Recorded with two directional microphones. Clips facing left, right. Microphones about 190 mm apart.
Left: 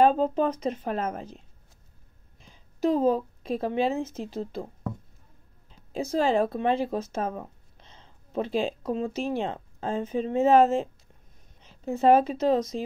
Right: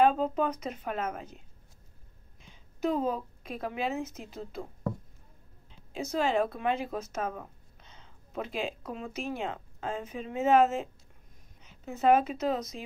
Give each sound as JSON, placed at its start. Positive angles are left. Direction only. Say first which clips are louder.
{"t": 0.0, "sound": "speech", "louder": "left 4 dB", "side_deg": 35}
{"t": 2.4, "sound": "a woman's voice", "louder": "left 5 dB", "side_deg": 35}
{"t": 5.7, "sound": "a woman's voice", "louder": "left 5 dB", "side_deg": 35}